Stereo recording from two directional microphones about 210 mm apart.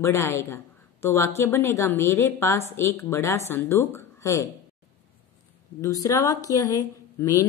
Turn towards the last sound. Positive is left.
turn(degrees=15)  # may be behind; listen again after turning